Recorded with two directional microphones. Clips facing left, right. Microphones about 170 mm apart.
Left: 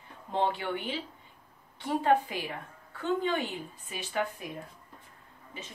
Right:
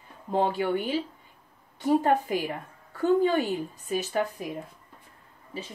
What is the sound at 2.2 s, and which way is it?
A woman's voice, 45° right (ahead or behind).